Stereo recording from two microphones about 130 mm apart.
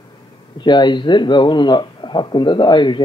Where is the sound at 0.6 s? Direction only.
35° left (ahead or behind).